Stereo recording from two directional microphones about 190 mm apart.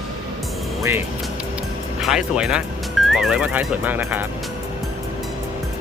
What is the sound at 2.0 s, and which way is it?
Speech, centre (ahead or behind).